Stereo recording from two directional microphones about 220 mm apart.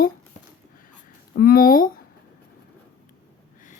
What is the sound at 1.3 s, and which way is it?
Speech, 40° left (ahead or behind).